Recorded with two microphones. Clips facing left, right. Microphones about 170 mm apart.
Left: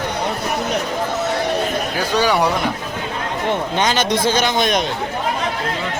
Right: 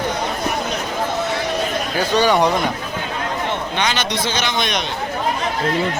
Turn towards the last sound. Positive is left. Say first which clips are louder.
# left 5 dB
turn(degrees=45)  # may be behind; listen again after turning